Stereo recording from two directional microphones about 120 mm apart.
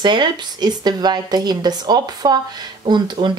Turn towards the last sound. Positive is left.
turn(degrees=-45)  # may be behind; listen again after turning